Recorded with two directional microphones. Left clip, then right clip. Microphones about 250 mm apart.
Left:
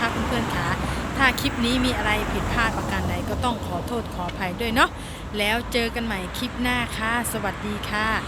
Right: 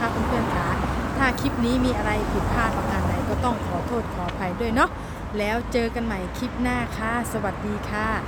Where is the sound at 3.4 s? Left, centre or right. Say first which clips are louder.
Right 1 dB; centre.